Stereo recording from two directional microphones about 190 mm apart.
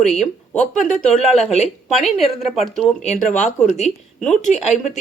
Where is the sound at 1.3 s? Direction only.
35° left (ahead or behind).